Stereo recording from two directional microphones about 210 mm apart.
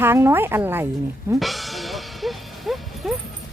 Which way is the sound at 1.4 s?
Centre (ahead or behind).